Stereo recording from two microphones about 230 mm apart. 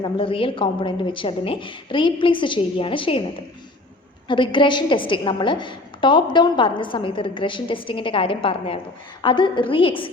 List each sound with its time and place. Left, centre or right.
0.0 s a woman's voice: left
4.3 s a woman's voice: left